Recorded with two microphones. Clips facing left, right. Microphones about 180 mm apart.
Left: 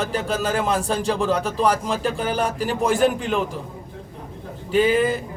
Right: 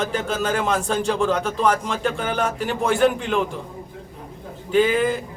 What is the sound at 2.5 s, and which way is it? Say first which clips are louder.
Speech: even; 35° left (ahead or behind).